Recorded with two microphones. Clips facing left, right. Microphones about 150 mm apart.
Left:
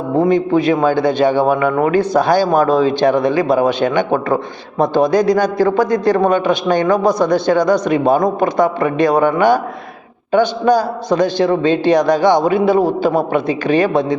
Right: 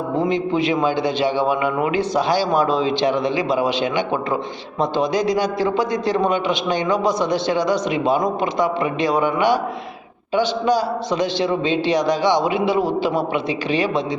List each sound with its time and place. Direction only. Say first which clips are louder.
0.2 s a man's voice: left 7 dB; 45° left (ahead or behind)